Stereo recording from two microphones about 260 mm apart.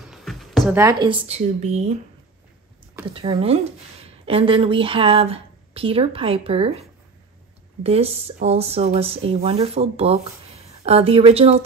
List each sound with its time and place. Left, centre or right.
0.0 s a sound: centre
0.7 s speech: centre
3.1 s speech: right